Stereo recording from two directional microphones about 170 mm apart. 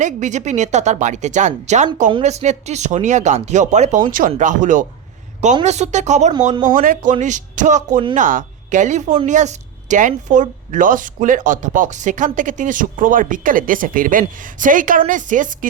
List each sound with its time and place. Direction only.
0.0 s a woman's voice: 45° right (ahead or behind)
6.5 s speech: 25° right (ahead or behind)
6.7 s a woman's voice: 50° right (ahead or behind)